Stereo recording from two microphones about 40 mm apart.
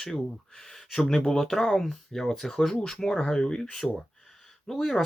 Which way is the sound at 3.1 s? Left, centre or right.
Centre.